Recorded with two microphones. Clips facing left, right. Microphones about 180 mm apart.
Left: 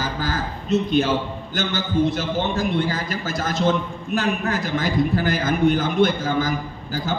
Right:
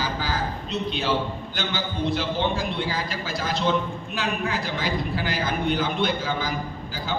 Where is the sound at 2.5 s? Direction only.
45° left (ahead or behind).